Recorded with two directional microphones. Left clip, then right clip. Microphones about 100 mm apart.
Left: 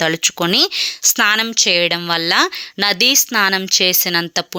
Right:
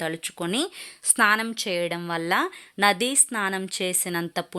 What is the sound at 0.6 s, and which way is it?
A woman's voice, 20° left (ahead or behind).